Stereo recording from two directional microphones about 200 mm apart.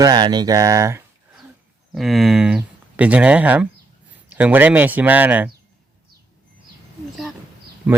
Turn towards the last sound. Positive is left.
turn(degrees=-5)  # may be behind; listen again after turning